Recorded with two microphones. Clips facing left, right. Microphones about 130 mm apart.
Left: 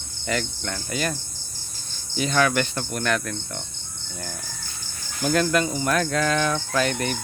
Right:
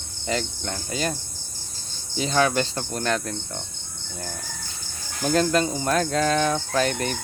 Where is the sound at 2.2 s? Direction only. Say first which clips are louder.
Even; 30° right (ahead or behind).